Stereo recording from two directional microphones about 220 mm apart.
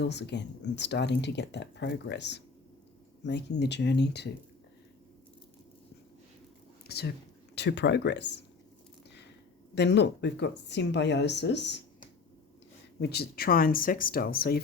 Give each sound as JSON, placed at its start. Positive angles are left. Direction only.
{"t": 0.0, "sound": "speech", "side_deg": 50}
{"t": 3.6, "sound": "speech", "side_deg": 50}
{"t": 6.8, "sound": "speech", "side_deg": 45}
{"t": 9.7, "sound": "speech", "side_deg": 50}
{"t": 13.0, "sound": "speech", "side_deg": 45}